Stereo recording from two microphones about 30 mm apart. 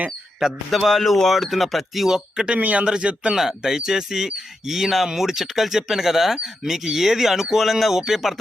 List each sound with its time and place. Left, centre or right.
0.4 s speech: centre
2.3 s speech: right
2.6 s a man's voice: right
2.8 s speech: right
3.3 s speech: centre